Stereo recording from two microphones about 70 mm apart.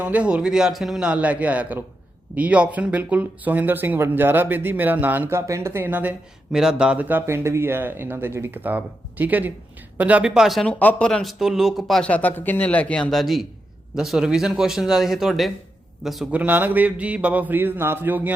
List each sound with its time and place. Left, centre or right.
0.0 s a man's voice: centre
5.3 s speech: right
5.8 s speech: right
6.5 s a man's voice: centre; by 7.3 s right
7.3 s speech: right
10.3 s a man's voice: centre
10.7 s speech: left
11.1 s a man's voice: centre
12.0 s speech: left
13.1 s a man's voice: centre
16.3 s speech: right